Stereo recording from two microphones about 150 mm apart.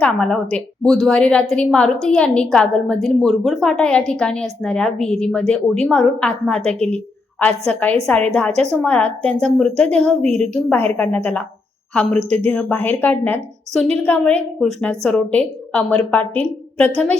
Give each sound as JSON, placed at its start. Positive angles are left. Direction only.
{"t": 0.0, "sound": "a woman's voice", "side_deg": 5}
{"t": 10.2, "sound": "a woman's voice", "side_deg": -50}
{"t": 10.5, "sound": "a woman's voice", "side_deg": 10}
{"t": 12.5, "sound": "a woman's voice", "side_deg": 10}